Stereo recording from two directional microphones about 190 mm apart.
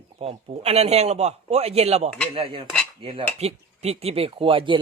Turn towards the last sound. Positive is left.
turn(degrees=-25)  # may be behind; listen again after turning